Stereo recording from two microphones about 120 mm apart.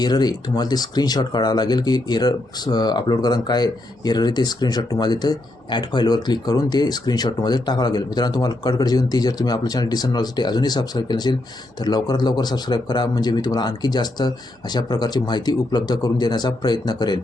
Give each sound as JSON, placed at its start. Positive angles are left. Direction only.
{"t": 0.0, "sound": "speech", "side_deg": 35}